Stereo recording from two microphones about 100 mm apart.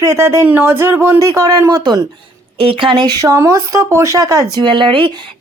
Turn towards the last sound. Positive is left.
turn(degrees=-55)  # may be behind; listen again after turning